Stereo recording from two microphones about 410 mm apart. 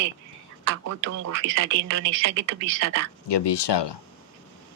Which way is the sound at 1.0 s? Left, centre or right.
Right.